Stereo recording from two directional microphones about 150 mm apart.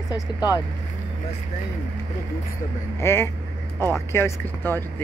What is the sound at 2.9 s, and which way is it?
Speech, 15° left (ahead or behind).